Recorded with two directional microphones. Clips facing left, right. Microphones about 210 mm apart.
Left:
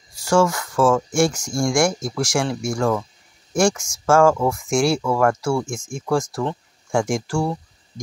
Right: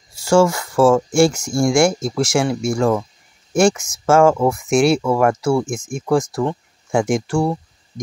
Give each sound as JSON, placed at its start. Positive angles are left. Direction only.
{"t": 0.1, "sound": "speech", "side_deg": -25}